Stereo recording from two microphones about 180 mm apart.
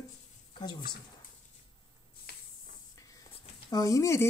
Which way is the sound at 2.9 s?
20° left (ahead or behind).